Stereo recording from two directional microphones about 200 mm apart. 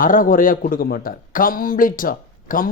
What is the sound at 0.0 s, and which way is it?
A man's voice, 45° left (ahead or behind).